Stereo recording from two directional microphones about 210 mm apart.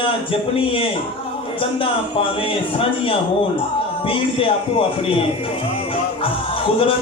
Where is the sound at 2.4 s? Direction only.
25° left (ahead or behind).